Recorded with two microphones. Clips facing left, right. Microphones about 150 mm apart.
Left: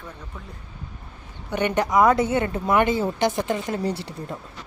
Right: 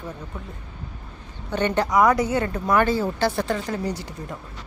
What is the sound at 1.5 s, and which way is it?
A woman's voice, 15° left (ahead or behind).